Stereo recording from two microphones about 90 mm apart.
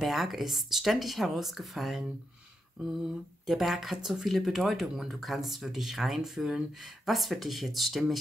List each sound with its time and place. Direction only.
0.0 s speech: centre (ahead or behind)